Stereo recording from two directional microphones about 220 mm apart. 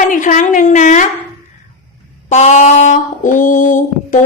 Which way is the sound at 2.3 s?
30° left (ahead or behind).